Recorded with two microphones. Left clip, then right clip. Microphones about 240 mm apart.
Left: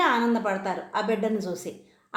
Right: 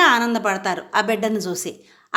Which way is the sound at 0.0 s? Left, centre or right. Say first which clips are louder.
Right 7 dB; right.